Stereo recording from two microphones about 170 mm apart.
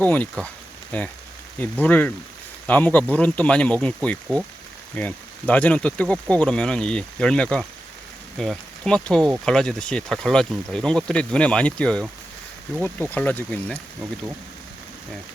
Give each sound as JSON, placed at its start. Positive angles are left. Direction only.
{"t": 0.0, "sound": "speech", "side_deg": 10}